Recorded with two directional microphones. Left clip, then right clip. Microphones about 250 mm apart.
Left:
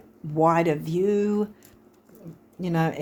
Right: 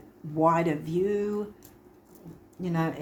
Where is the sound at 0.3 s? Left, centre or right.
Left.